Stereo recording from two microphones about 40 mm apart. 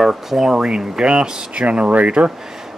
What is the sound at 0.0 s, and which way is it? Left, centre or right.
Speech, centre.